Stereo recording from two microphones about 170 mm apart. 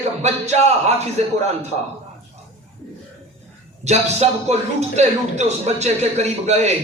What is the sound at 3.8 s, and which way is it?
A man's voice, 40° right (ahead or behind).